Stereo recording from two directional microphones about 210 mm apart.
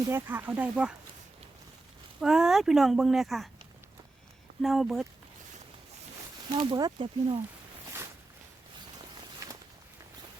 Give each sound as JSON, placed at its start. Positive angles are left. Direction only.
{"t": 0.1, "sound": "speech", "side_deg": -10}
{"t": 2.2, "sound": "speech", "side_deg": 0}
{"t": 4.6, "sound": "speech", "side_deg": 0}
{"t": 6.6, "sound": "speech", "side_deg": -20}